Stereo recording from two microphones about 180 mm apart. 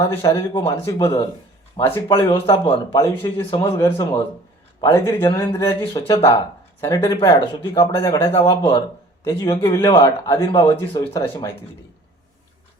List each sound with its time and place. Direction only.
0.2 s a man's voice: 20° left (ahead or behind)
8.3 s a man's voice: 30° left (ahead or behind)